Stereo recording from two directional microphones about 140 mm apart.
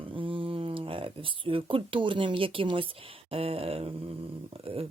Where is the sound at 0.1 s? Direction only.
40° right (ahead or behind).